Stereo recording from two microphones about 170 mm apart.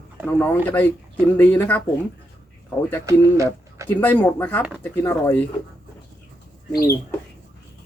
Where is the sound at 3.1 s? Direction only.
15° right (ahead or behind).